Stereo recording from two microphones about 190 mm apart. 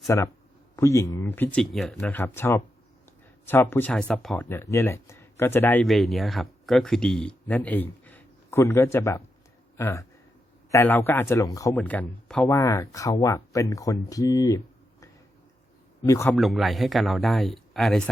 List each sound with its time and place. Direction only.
0.1 s speech: 15° left (ahead or behind)
5.8 s speech: centre (ahead or behind); by 14.6 s 15° left (ahead or behind)
16.0 s speech: 15° left (ahead or behind)
16.3 s speech: centre (ahead or behind)